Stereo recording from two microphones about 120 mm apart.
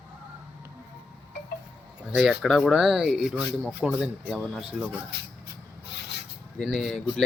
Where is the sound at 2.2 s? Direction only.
Centre (ahead or behind).